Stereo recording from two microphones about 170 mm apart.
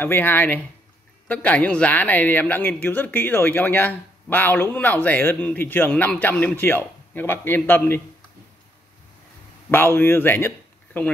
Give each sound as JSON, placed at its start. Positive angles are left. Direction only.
{"t": 0.0, "sound": "speech", "side_deg": 10}
{"t": 9.7, "sound": "speech", "side_deg": 15}